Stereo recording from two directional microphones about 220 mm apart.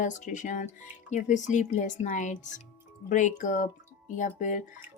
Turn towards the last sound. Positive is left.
turn(degrees=35)  # may be behind; listen again after turning